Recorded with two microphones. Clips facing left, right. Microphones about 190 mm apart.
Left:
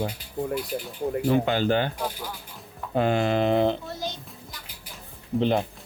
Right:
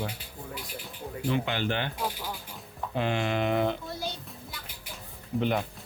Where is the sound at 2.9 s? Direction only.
40° left (ahead or behind).